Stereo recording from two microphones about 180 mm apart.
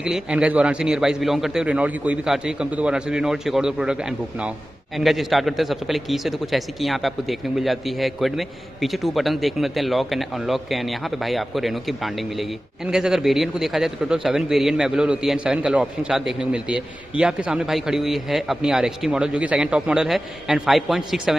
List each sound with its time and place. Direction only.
0.0 s a man's voice: 5° right (ahead or behind)